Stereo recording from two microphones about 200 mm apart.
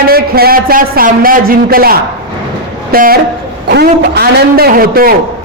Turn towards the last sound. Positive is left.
turn(degrees=-45)  # may be behind; listen again after turning